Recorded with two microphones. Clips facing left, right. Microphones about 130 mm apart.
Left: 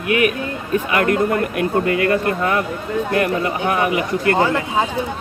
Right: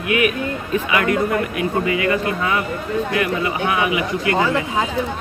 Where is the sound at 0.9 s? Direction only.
50° left (ahead or behind).